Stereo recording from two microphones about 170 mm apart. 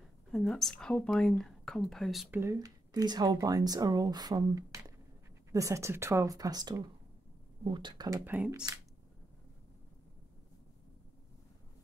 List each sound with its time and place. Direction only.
0.3 s speech: centre (ahead or behind)
2.3 s speech: 15° right (ahead or behind)
8.3 s speech: 10° right (ahead or behind)